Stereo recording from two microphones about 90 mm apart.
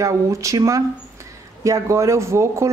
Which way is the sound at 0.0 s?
35° right (ahead or behind).